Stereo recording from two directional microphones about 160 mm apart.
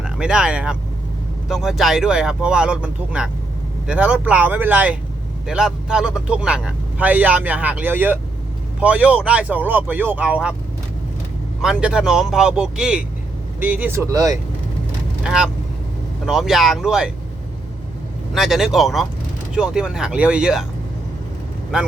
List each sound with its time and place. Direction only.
0.0 s a man's voice: 5° right (ahead or behind)
11.6 s a man's voice: 5° right (ahead or behind); by 14.3 s 20° right (ahead or behind)
15.2 s speech: 5° right (ahead or behind)
18.3 s speech: centre (ahead or behind)
21.7 s speech: 5° right (ahead or behind)